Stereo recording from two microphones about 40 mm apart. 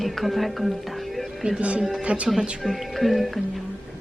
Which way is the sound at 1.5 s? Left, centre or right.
Right.